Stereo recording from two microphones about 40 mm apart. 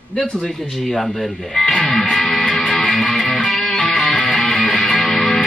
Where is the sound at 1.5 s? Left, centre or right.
Left.